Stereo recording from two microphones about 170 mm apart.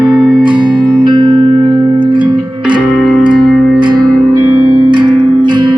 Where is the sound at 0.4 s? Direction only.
30° right (ahead or behind).